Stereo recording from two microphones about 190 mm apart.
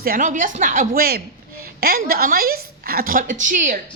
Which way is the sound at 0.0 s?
45° right (ahead or behind).